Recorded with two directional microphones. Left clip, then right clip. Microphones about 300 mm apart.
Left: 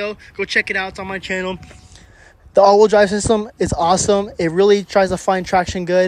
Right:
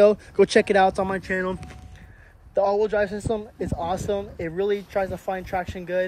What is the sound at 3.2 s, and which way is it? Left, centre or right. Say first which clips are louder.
Speech: left 10 dB; left.